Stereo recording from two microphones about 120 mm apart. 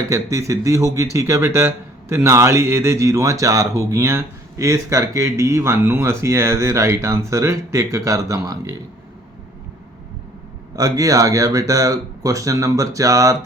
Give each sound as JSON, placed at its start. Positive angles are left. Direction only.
{"t": 0.1, "sound": "speech", "side_deg": -25}
{"t": 10.8, "sound": "speech", "side_deg": -30}